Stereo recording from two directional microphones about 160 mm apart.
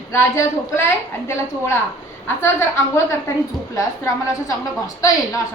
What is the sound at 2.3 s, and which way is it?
A woman's voice, 15° left (ahead or behind).